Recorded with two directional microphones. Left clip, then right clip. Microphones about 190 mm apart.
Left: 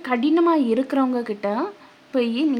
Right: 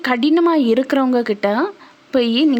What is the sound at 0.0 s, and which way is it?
Speech, 35° right (ahead or behind).